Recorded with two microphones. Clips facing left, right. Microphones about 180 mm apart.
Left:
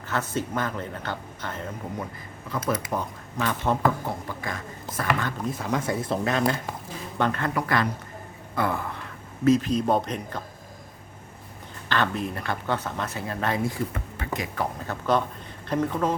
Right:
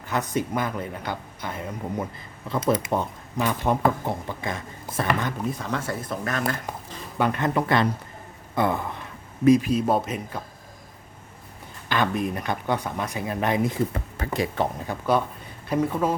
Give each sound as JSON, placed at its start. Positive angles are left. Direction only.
{"t": 0.1, "sound": "speech", "side_deg": -15}
{"t": 2.5, "sound": "speech", "side_deg": -25}
{"t": 3.4, "sound": "speech", "side_deg": -15}
{"t": 5.4, "sound": "speech", "side_deg": 0}
{"t": 5.6, "sound": "speech", "side_deg": 15}
{"t": 7.2, "sound": "speech", "side_deg": -15}
{"t": 11.9, "sound": "speech", "side_deg": -15}
{"t": 14.8, "sound": "speech", "side_deg": -10}